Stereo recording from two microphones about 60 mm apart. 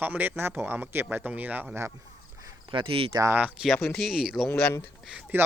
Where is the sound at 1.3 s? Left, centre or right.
Right.